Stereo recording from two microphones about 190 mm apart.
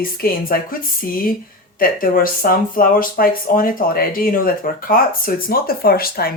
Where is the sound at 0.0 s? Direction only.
50° left (ahead or behind).